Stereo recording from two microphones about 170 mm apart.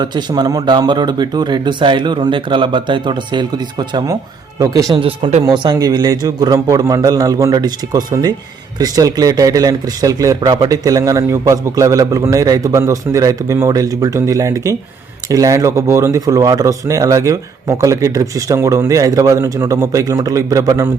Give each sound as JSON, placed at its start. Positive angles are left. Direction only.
{"t": 0.0, "sound": "a man's voice", "side_deg": -25}